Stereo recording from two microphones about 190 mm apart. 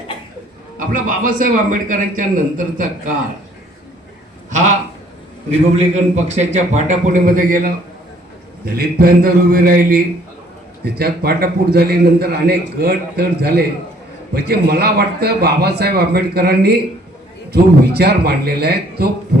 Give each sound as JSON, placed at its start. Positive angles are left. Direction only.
{"t": 0.8, "sound": "a man's voice", "side_deg": -45}
{"t": 4.4, "sound": "a sound", "side_deg": -40}
{"t": 5.7, "sound": "a man's voice", "side_deg": -35}